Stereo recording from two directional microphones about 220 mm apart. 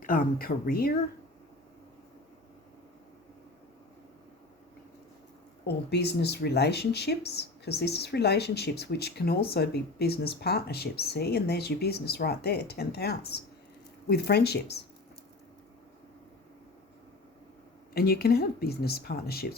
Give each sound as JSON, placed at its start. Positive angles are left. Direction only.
{"t": 0.0, "sound": "speech", "side_deg": 40}
{"t": 5.6, "sound": "speech", "side_deg": 50}
{"t": 17.9, "sound": "speech", "side_deg": 45}